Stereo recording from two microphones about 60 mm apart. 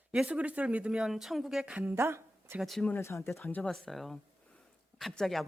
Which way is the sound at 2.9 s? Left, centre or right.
Left.